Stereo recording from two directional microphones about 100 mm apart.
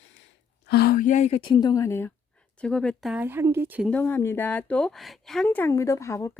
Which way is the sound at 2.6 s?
10° left (ahead or behind).